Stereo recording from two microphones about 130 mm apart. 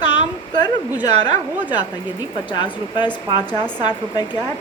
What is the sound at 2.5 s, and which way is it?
Speech, 35° left (ahead or behind).